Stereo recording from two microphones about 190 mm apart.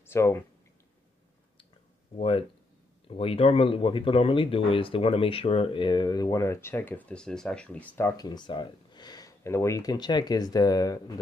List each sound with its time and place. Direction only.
0.0 s speech: 15° left (ahead or behind)
2.1 s speech: 30° left (ahead or behind); by 7.8 s 5° left (ahead or behind)
7.9 s speech: 15° left (ahead or behind)